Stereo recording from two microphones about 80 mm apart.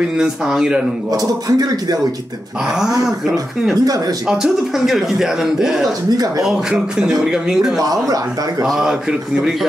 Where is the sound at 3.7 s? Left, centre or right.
Right.